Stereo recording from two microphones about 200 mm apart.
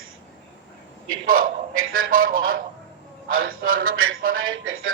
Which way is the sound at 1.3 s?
45° right (ahead or behind).